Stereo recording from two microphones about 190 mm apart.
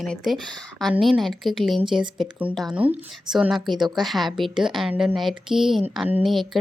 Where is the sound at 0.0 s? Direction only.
Centre (ahead or behind).